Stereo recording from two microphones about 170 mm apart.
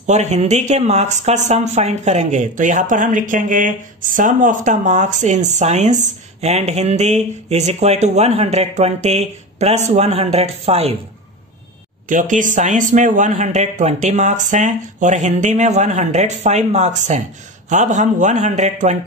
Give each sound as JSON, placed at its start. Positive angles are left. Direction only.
{"t": 0.0, "sound": "speech", "side_deg": -45}
{"t": 12.1, "sound": "speech", "side_deg": -50}